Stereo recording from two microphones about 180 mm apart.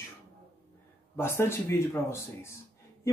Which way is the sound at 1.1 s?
15° left (ahead or behind).